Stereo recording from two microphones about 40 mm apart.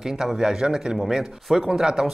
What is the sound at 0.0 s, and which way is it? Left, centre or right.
Speech, centre.